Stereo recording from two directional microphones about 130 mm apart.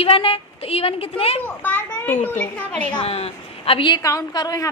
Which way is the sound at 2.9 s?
45° left (ahead or behind).